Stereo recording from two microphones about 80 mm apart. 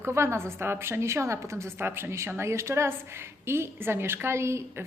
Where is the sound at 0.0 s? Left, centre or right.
Right.